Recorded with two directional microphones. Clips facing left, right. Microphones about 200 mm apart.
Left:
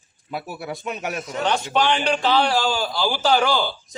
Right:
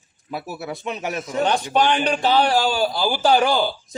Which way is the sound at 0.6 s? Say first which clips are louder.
Right 2 dB; centre (ahead or behind).